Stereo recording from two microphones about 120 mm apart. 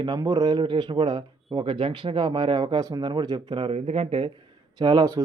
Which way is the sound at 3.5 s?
50° right (ahead or behind).